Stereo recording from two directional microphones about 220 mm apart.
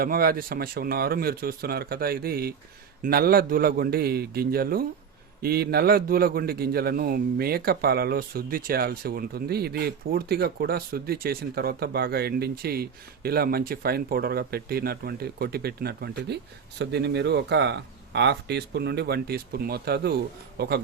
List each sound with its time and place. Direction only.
0.0 s a man's voice: 40° right (ahead or behind)